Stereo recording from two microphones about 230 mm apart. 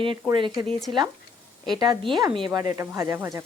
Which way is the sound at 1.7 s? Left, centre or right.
Centre.